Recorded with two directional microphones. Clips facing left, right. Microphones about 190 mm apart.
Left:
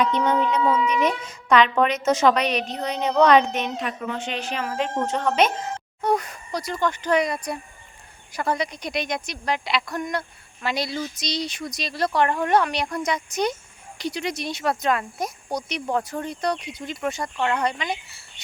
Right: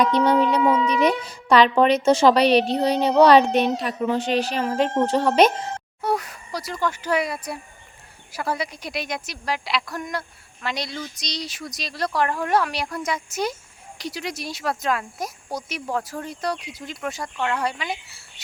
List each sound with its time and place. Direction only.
0.0 s speech: 35° right (ahead or behind)
6.0 s a sound: 5° right (ahead or behind)
6.8 s a woman's voice: 5° right (ahead or behind)